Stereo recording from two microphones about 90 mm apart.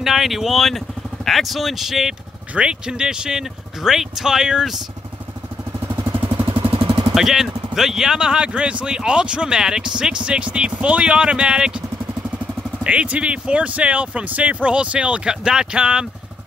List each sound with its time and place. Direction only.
0.0 s speech: 5° right (ahead or behind)
5.9 s vehicle: 25° right (ahead or behind)
6.7 s vehicle: 85° right
7.2 s speech: 5° right (ahead or behind)
12.8 s speech: 15° right (ahead or behind)